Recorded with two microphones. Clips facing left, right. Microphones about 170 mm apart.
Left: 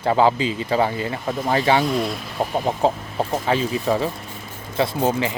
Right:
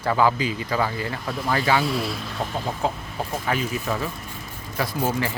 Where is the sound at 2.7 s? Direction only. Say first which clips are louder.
Left 6 dB; 35° left (ahead or behind).